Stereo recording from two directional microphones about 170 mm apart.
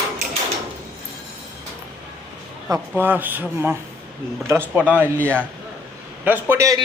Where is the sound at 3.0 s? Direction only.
10° right (ahead or behind).